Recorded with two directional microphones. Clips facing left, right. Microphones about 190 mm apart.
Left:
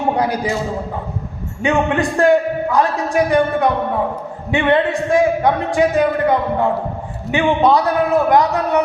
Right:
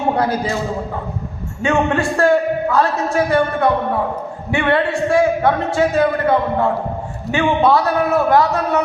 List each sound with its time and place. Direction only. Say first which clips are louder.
0.2 s a man's voice: even; 15° left (ahead or behind)
1.6 s a man's voice: even; 15° left (ahead or behind)